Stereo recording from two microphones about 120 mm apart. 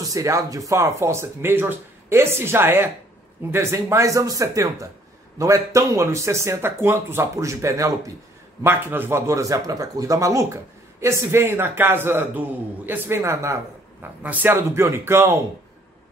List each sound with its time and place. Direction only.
0.1 s speech: 25° right (ahead or behind)